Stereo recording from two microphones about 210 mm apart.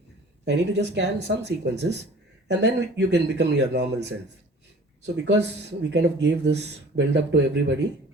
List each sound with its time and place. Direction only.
0.4 s speech: 55° right (ahead or behind)
5.1 s speech: 55° right (ahead or behind)